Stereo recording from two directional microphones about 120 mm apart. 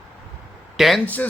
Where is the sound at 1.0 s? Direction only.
15° left (ahead or behind).